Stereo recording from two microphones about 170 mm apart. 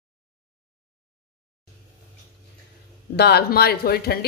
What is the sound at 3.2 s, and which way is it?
A woman's voice, 75° left (ahead or behind).